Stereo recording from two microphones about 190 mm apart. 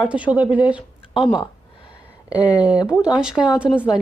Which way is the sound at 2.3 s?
20° left (ahead or behind).